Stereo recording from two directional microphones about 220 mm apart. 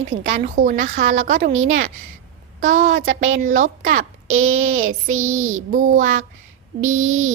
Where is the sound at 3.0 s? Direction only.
65° right (ahead or behind).